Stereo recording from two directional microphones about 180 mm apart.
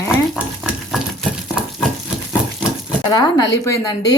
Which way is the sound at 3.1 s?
20° left (ahead or behind).